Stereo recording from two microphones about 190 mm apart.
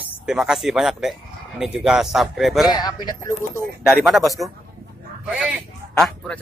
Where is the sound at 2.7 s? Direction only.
20° left (ahead or behind).